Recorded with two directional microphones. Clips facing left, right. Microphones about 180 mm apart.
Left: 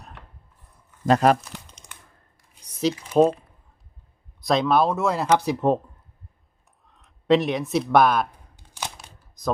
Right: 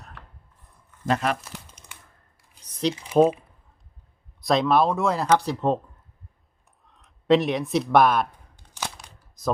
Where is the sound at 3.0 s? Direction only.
5° right (ahead or behind).